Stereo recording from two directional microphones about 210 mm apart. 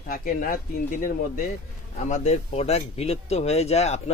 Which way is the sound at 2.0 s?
30° left (ahead or behind).